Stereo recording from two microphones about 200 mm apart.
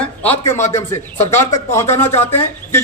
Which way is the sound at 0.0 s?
10° left (ahead or behind).